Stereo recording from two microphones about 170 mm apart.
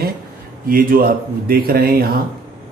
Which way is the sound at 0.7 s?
55° right (ahead or behind).